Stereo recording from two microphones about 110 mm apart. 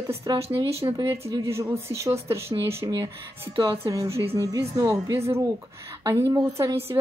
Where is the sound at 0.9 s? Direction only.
30° right (ahead or behind).